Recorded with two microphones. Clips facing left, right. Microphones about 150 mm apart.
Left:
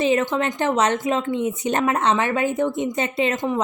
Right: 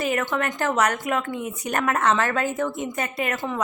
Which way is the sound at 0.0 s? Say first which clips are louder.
Left 5 dB; 20° left (ahead or behind).